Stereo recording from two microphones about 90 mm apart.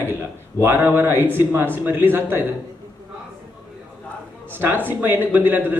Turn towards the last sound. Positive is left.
turn(degrees=-20)  # may be behind; listen again after turning